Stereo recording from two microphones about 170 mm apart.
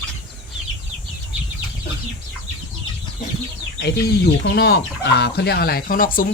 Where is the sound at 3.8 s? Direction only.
70° left (ahead or behind).